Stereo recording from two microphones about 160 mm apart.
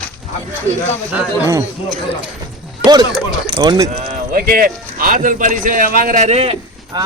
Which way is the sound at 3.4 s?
30° right (ahead or behind).